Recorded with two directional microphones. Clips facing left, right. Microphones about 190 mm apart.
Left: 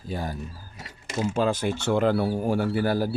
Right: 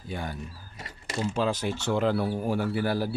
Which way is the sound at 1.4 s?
50° left (ahead or behind).